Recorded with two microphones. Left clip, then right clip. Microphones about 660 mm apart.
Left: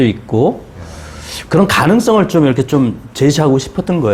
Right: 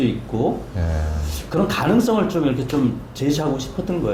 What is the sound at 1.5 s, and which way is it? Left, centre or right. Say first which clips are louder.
Speech: left 9 dB; left.